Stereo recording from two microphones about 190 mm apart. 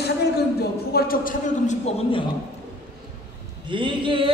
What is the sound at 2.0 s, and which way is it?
Speech, 25° left (ahead or behind).